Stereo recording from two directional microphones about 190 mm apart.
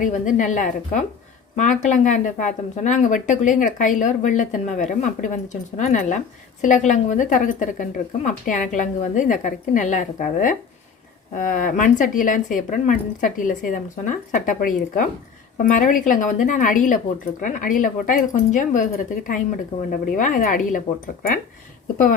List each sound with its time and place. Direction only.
0.0 s speech: 40° left (ahead or behind)